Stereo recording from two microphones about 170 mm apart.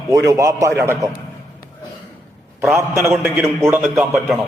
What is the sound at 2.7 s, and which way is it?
A man's voice, 15° right (ahead or behind).